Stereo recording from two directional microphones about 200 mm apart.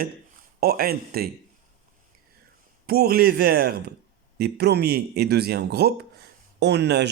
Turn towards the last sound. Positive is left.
turn(degrees=-55)  # may be behind; listen again after turning